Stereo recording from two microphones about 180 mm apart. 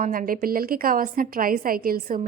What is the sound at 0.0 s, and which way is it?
A woman's voice, 50° right (ahead or behind).